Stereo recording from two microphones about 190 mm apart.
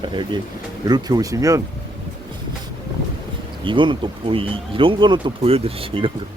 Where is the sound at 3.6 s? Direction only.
25° right (ahead or behind).